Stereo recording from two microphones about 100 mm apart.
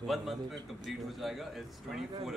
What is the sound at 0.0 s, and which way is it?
Speech, centre (ahead or behind).